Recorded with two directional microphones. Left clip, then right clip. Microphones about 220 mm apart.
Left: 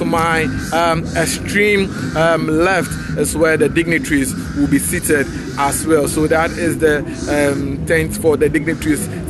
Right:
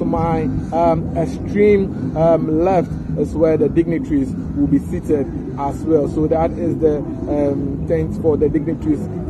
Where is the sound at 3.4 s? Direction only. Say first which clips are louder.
Left 1 dB; 10° left (ahead or behind).